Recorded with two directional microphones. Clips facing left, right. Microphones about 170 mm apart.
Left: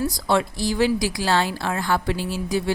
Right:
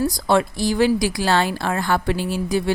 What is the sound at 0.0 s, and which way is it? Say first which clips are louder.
A woman's voice: right 3 dB; 50° right (ahead or behind).